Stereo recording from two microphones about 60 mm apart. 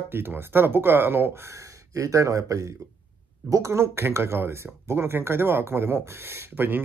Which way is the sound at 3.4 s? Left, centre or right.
Right.